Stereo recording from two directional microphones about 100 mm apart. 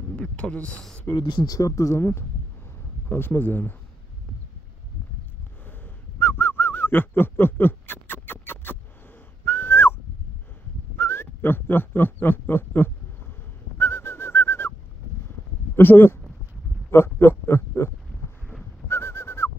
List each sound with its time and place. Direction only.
0.1 s speech: 10° left (ahead or behind)
1.1 s speech: 50° left (ahead or behind); by 3.7 s 20° left (ahead or behind)
5.7 s bird: 20° left (ahead or behind)
9.4 s whistling: 20° left (ahead or behind)
11.0 s a sound: 25° left (ahead or behind)
15.7 s speech: 20° left (ahead or behind)
18.9 s bird: 25° left (ahead or behind)